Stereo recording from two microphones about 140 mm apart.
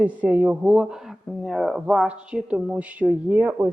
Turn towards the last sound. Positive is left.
turn(degrees=-10)  # may be behind; listen again after turning